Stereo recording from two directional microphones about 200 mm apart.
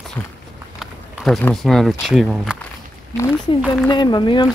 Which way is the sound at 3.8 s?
20° left (ahead or behind).